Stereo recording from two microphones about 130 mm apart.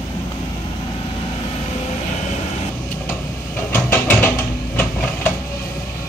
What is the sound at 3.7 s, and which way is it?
Train, 15° left (ahead or behind).